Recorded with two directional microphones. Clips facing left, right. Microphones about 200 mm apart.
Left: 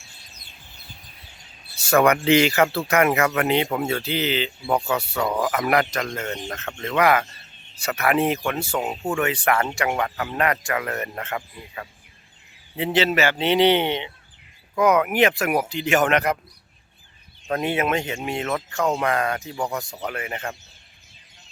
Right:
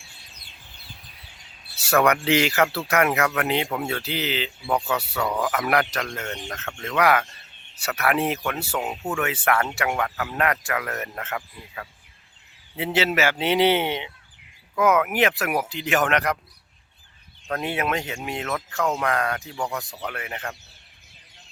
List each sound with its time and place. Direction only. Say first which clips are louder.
1.8 s speech: left 2 dB; centre (ahead or behind)
17.6 s speech: left 3 dB; centre (ahead or behind)
19.5 s speech: left 2 dB; 20° left (ahead or behind)
20.1 s speech: left 4 dB; centre (ahead or behind)